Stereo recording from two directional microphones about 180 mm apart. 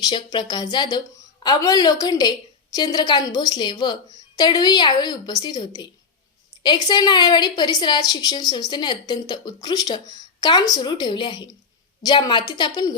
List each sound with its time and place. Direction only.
0.0 s a woman's voice: 25° left (ahead or behind)